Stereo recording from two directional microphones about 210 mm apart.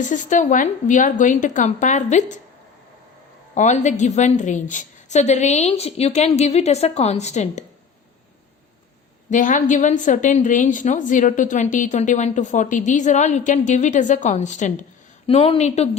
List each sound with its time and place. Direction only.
0.0 s a woman's voice: 35° left (ahead or behind)
3.5 s a woman's voice: 35° left (ahead or behind)
9.3 s a woman's voice: 40° left (ahead or behind)